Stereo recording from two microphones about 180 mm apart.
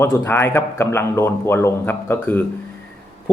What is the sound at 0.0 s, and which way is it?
Speech, 15° left (ahead or behind).